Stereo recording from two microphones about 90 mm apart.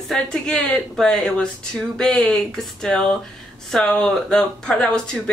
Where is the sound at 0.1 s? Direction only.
10° left (ahead or behind).